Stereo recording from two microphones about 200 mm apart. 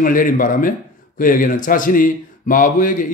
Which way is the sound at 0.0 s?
45° left (ahead or behind).